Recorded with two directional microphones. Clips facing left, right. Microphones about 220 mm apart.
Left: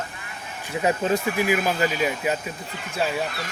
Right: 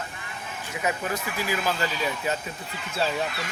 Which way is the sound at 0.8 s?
30° left (ahead or behind).